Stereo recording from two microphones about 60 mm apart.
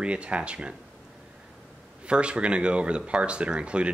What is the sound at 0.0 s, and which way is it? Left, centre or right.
Speech, centre.